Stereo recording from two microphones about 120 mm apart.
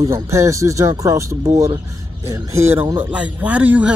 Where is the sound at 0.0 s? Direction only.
25° right (ahead or behind).